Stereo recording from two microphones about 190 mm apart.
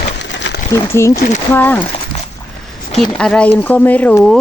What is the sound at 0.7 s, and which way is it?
Speech, 15° left (ahead or behind).